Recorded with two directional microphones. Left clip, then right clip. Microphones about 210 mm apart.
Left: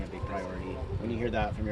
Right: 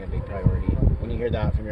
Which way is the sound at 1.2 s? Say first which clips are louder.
Right 5 dB; 40° right (ahead or behind).